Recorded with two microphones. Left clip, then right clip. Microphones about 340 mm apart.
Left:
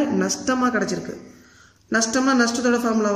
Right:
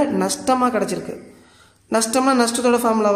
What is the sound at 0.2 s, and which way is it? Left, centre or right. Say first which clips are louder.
Speech: right 4 dB; centre.